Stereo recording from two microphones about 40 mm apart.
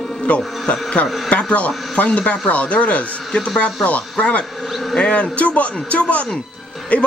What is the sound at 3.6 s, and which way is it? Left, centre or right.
Speech, left.